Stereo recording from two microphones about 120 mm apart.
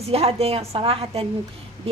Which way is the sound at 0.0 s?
55° right (ahead or behind).